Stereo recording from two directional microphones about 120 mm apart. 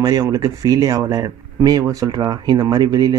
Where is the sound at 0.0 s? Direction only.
30° right (ahead or behind).